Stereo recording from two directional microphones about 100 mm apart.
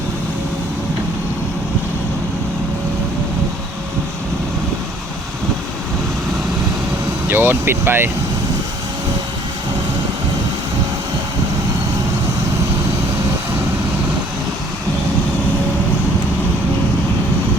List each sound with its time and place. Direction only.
7.3 s speech: 20° right (ahead or behind)